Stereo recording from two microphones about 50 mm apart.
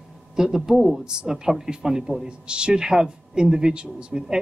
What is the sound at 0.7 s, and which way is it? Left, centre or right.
A man's voice, centre.